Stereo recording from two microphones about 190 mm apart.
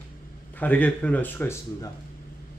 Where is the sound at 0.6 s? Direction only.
10° left (ahead or behind).